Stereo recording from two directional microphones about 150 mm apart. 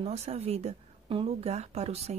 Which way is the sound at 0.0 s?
45° right (ahead or behind).